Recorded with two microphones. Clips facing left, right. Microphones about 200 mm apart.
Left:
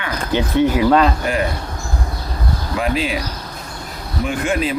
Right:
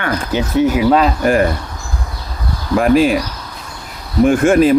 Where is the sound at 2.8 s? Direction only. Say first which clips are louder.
Right 10 dB; 50° right (ahead or behind).